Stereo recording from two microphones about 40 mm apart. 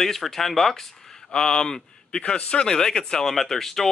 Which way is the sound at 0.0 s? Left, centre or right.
Centre.